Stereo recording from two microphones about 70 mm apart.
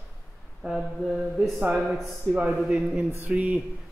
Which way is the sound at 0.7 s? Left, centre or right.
Centre.